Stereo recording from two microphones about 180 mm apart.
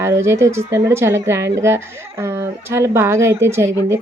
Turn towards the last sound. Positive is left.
turn(degrees=-15)  # may be behind; listen again after turning